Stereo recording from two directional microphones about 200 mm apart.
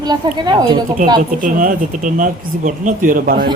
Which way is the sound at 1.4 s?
40° right (ahead or behind).